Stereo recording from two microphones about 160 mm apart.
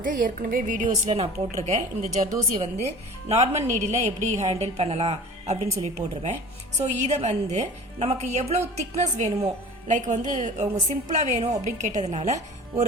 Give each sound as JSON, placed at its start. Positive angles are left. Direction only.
{"t": 0.0, "sound": "a woman's voice", "side_deg": -55}